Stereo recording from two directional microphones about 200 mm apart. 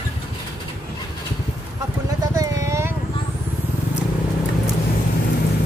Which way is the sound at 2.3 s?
15° right (ahead or behind).